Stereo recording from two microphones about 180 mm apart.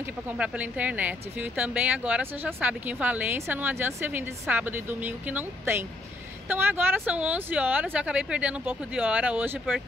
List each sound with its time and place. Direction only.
0.0 s speech: 10° right (ahead or behind)